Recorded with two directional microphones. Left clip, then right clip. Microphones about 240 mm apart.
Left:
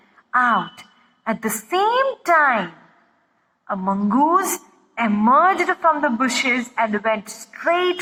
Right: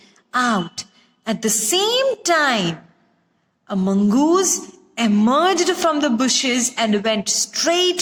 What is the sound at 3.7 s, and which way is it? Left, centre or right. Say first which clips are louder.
A man's voice: right 1 dB; right.